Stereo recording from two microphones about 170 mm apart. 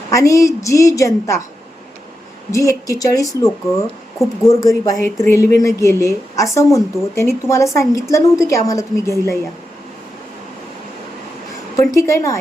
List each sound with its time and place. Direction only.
0.1 s a woman's voice: 20° left (ahead or behind)
2.5 s a woman's voice: 20° left (ahead or behind)
11.8 s speech: 20° left (ahead or behind)